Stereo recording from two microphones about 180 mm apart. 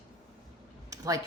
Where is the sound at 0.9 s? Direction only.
20° right (ahead or behind).